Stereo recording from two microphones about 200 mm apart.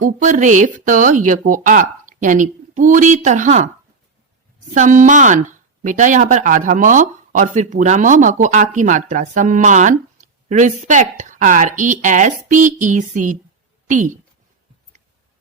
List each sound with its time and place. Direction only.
0.0 s speech: 40° right (ahead or behind)
4.7 s speech: 40° right (ahead or behind)